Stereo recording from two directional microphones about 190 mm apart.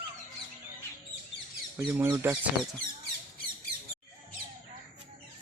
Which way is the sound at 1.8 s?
10° right (ahead or behind).